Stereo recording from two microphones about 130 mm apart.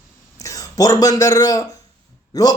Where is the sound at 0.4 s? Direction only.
25° left (ahead or behind).